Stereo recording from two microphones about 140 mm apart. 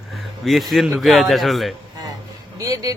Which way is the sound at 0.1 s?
Centre (ahead or behind).